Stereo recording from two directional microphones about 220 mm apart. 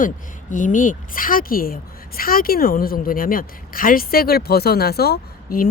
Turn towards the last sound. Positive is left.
turn(degrees=45)  # may be behind; listen again after turning